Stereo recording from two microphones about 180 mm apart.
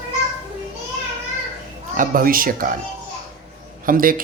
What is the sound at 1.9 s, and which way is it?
Speech, 50° right (ahead or behind).